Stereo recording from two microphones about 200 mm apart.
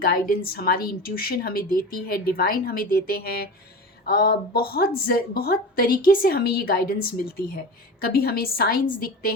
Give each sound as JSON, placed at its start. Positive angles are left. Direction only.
{"t": 0.0, "sound": "a woman's voice", "side_deg": 50}
{"t": 8.0, "sound": "a woman's voice", "side_deg": 50}